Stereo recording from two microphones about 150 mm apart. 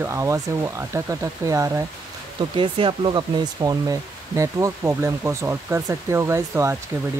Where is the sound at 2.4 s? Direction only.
35° right (ahead or behind).